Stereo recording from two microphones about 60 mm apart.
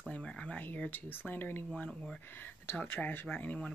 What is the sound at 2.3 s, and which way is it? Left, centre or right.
Speech, left.